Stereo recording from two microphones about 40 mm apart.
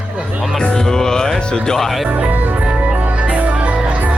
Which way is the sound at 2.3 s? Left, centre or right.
Right.